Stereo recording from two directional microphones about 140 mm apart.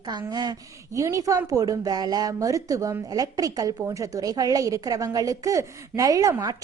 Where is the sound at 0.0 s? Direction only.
30° right (ahead or behind).